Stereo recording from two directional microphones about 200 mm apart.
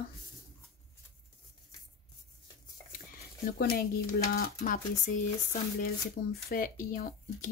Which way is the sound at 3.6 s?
50° left (ahead or behind).